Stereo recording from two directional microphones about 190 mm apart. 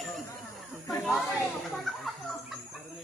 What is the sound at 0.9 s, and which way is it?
Snake, 15° left (ahead or behind).